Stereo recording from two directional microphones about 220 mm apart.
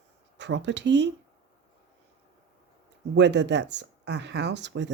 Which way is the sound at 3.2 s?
55° right (ahead or behind).